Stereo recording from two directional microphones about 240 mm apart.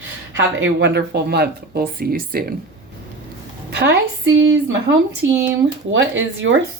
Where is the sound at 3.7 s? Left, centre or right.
Right.